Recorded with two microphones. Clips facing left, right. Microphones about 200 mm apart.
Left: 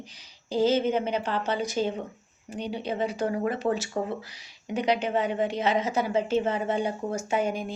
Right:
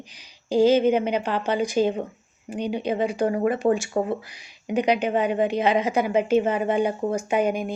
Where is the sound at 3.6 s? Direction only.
35° right (ahead or behind).